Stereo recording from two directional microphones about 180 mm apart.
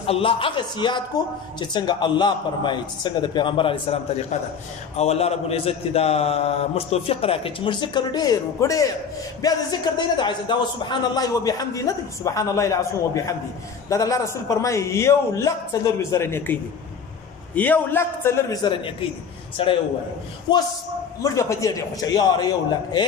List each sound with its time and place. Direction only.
0.0 s a man's voice: 30° left (ahead or behind); by 16.5 s 15° left (ahead or behind)
17.6 s a man's voice: 10° left (ahead or behind); by 20.6 s 25° left (ahead or behind)
21.2 s a man's voice: 15° left (ahead or behind)